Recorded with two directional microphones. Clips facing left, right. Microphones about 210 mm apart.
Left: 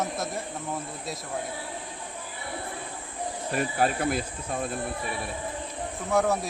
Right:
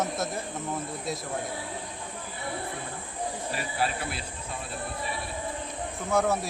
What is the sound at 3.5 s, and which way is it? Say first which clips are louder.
Speech: left 7 dB; 50° left (ahead or behind).